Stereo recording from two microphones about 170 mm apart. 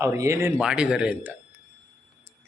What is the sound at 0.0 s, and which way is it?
Speech, 15° right (ahead or behind).